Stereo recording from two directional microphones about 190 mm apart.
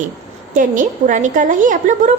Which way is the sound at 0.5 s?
45° right (ahead or behind).